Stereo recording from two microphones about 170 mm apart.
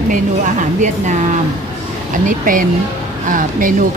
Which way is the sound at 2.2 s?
55° right (ahead or behind).